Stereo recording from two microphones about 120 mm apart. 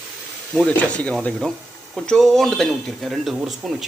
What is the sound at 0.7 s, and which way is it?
Speech, 10° left (ahead or behind).